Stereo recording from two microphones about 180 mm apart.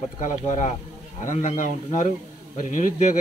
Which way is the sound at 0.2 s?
40° left (ahead or behind).